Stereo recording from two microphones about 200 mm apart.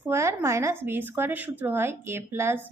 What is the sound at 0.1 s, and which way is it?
A woman's voice, 15° right (ahead or behind).